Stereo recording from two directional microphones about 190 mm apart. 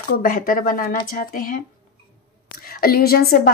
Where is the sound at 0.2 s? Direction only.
50° left (ahead or behind).